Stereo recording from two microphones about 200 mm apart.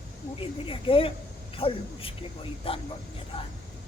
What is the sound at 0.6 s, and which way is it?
A man's voice, 25° left (ahead or behind).